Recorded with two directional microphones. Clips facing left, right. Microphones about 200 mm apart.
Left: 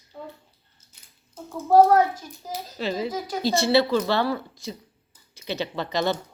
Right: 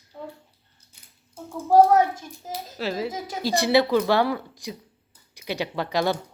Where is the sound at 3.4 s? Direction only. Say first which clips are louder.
Even; 15° right (ahead or behind).